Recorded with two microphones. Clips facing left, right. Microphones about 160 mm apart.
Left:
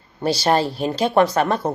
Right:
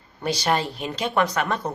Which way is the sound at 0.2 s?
30° left (ahead or behind).